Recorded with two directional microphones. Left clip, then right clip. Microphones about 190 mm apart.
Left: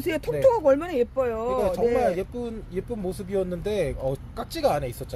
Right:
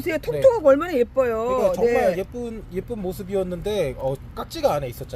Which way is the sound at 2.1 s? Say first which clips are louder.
Right 3 dB; 5° right (ahead or behind).